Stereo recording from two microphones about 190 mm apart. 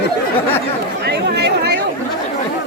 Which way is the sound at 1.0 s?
60° right (ahead or behind).